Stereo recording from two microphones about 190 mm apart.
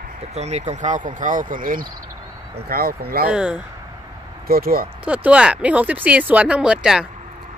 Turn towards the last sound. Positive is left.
turn(degrees=-5)  # may be behind; listen again after turning